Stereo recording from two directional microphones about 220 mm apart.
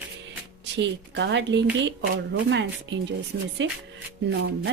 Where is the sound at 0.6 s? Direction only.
55° right (ahead or behind).